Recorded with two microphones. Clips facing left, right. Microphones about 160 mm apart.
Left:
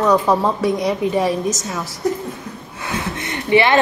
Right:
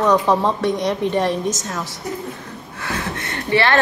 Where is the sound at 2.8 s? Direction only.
20° left (ahead or behind).